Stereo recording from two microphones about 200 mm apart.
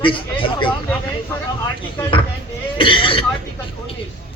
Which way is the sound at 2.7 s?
25° left (ahead or behind).